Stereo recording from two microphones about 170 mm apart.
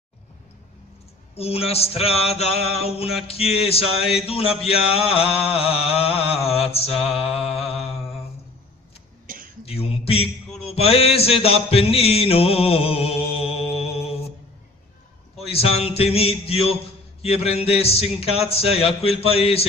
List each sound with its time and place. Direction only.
1.3 s mantra: 35° left (ahead or behind)
9.3 s a sound: 55° right (ahead or behind)
9.7 s a sound: 35° left (ahead or behind)
10.7 s mantra: 35° left (ahead or behind)
15.3 s a man's voice: 35° left (ahead or behind)
17.2 s mantra: 35° left (ahead or behind)